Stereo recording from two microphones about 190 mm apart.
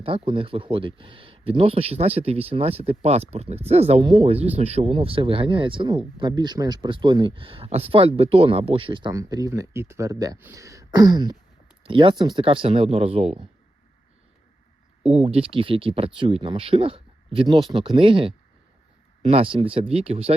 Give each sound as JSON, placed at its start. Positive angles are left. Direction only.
{"t": 0.0, "sound": "speech", "side_deg": -30}
{"t": 15.0, "sound": "speech", "side_deg": -30}